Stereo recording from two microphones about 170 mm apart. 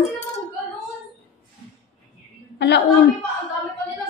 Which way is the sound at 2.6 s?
90° left.